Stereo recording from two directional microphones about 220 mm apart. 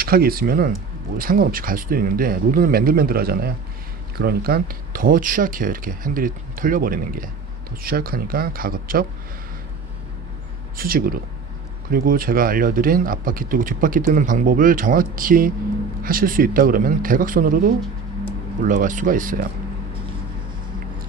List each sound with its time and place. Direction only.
0.0 s speech: 45° right (ahead or behind)
10.8 s speech: 40° right (ahead or behind)
18.6 s speech: 35° right (ahead or behind)